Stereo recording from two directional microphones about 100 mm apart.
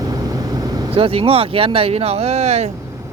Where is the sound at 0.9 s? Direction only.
70° right (ahead or behind); by 2.7 s 90° right.